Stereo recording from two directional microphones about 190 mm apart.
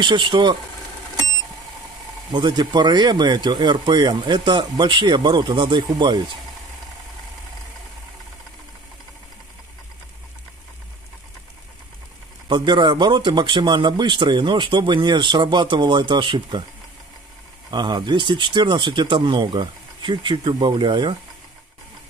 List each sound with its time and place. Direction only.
0.0 s speech: 25° right (ahead or behind)
2.3 s speech: 25° right (ahead or behind)
12.4 s speech: 25° right (ahead or behind)
17.6 s speech: 25° right (ahead or behind)